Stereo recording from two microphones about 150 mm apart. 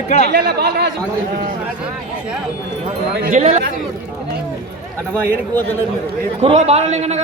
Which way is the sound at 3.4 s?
50° right (ahead or behind).